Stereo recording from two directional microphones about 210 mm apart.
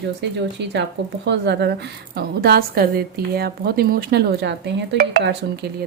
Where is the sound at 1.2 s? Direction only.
55° right (ahead or behind).